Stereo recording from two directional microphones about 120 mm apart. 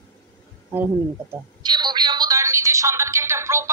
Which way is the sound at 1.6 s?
35° right (ahead or behind).